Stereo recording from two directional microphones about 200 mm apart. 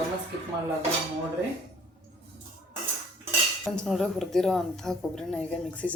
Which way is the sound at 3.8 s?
Centre (ahead or behind).